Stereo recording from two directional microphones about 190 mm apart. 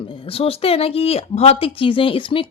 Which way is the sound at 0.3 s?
30° left (ahead or behind).